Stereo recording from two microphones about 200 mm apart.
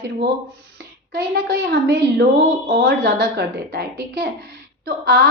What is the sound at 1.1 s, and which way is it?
A woman's voice, 55° right (ahead or behind).